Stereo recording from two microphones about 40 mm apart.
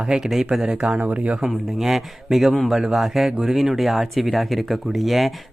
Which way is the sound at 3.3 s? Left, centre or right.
Centre.